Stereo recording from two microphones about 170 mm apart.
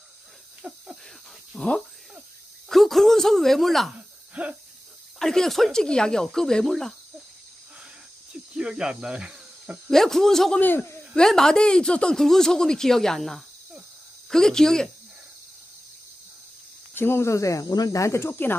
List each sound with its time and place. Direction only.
0.6 s a sound: 5° right (ahead or behind)
5.2 s speech: centre (ahead or behind)
8.5 s speech: 5° right (ahead or behind)
16.9 s speech: 15° left (ahead or behind)